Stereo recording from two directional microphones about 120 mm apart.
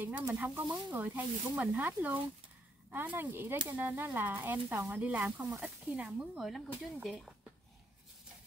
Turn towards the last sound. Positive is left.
turn(degrees=0)  # may be behind; listen again after turning